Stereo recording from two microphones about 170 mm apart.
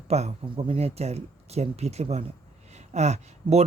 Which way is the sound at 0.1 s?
40° right (ahead or behind).